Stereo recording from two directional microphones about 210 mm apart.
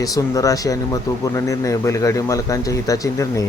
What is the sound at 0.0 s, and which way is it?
Speech, 15° left (ahead or behind).